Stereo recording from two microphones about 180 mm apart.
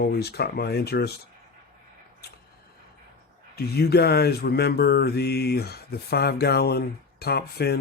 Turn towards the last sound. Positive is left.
turn(degrees=60)  # may be behind; listen again after turning